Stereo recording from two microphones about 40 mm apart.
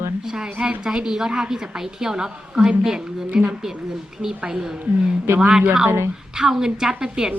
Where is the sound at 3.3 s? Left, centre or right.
Right.